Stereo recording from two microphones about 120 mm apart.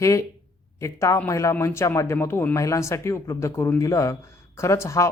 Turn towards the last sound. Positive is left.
turn(degrees=25)  # may be behind; listen again after turning